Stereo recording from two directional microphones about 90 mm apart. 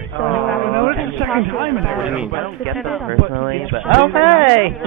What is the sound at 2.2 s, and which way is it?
Speech, 5° right (ahead or behind).